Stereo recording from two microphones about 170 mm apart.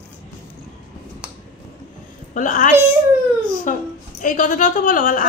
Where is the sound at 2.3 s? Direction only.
50° left (ahead or behind).